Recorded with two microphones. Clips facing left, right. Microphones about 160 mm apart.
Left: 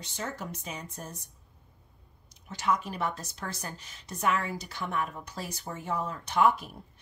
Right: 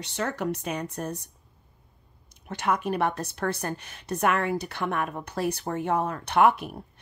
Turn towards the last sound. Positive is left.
turn(degrees=-65)  # may be behind; listen again after turning